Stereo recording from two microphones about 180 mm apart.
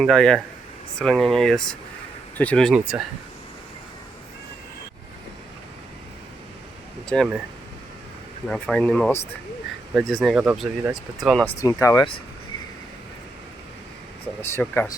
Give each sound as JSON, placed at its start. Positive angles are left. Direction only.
{"t": 0.0, "sound": "speech", "side_deg": 5}
{"t": 7.1, "sound": "speech", "side_deg": 5}
{"t": 8.4, "sound": "speech", "side_deg": 5}
{"t": 11.4, "sound": "speech", "side_deg": 15}
{"t": 14.5, "sound": "speech", "side_deg": 10}